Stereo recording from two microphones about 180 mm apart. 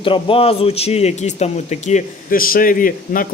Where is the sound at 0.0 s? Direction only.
30° left (ahead or behind).